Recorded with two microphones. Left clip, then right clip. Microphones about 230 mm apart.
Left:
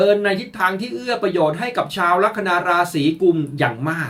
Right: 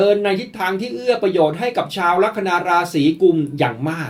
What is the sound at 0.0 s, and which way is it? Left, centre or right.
Speech, centre.